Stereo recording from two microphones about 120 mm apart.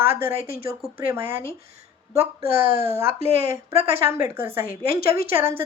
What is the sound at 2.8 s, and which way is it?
A woman's voice, 20° right (ahead or behind).